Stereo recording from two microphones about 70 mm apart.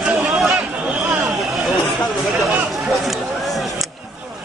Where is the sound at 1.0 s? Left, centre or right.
Centre.